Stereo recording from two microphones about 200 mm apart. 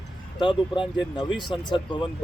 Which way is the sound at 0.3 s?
25° left (ahead or behind).